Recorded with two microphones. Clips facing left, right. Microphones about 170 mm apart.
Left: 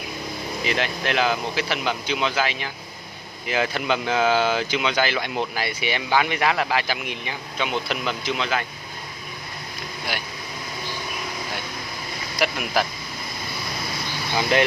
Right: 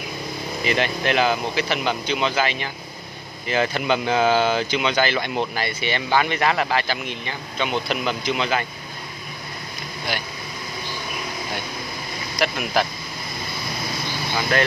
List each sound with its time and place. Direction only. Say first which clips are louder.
0.7 s speech: right 3 dB; centre (ahead or behind)
12.4 s speech: right 1 dB; 5° left (ahead or behind)
14.5 s speech: left 1 dB; 20° left (ahead or behind)